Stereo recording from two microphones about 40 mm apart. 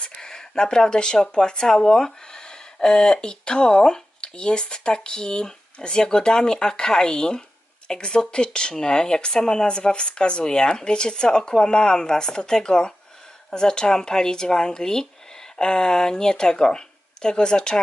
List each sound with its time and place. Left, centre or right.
0.0 s speech: centre